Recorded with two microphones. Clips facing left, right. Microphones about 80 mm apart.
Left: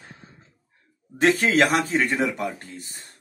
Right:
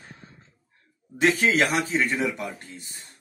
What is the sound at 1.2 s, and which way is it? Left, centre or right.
Speech, left.